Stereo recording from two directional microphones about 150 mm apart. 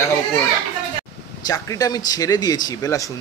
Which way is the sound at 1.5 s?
25° left (ahead or behind).